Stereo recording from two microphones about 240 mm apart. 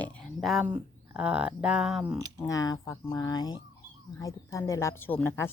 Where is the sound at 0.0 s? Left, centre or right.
Centre.